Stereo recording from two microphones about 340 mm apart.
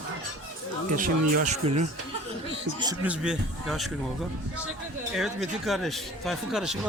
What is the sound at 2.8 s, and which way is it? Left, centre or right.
Speech, centre.